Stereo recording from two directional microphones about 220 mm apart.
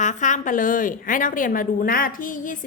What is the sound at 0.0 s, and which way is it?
Speech, 35° left (ahead or behind).